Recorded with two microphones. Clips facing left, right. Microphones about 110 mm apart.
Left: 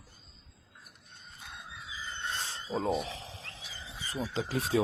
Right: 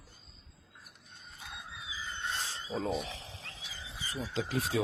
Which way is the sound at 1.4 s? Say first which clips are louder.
Even; centre (ahead or behind).